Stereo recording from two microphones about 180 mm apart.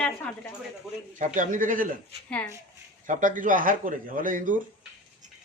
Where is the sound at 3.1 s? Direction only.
45° right (ahead or behind).